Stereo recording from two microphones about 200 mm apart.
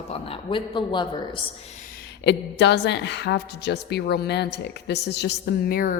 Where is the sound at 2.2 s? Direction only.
60° left (ahead or behind).